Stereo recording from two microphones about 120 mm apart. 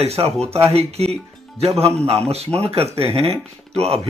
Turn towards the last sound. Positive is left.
turn(degrees=-60)  # may be behind; listen again after turning